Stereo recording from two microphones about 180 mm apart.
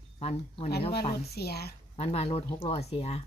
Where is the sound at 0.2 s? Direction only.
35° left (ahead or behind).